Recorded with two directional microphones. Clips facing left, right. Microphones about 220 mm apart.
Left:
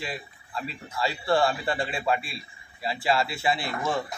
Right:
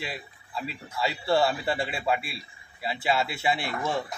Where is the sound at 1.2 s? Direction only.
5° right (ahead or behind).